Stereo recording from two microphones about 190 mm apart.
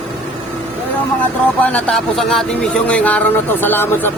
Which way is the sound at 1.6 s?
5° left (ahead or behind).